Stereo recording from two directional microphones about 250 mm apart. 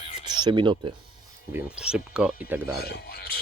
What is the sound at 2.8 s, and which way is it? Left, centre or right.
Speech, left.